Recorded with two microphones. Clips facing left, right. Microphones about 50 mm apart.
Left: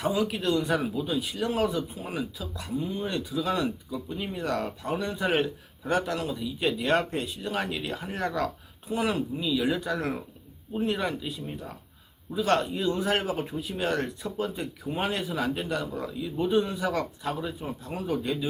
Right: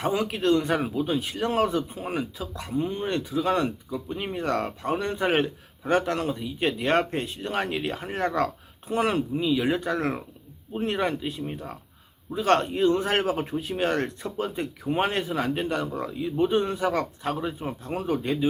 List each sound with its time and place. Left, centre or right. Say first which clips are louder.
0.0 s speech: right 2 dB; right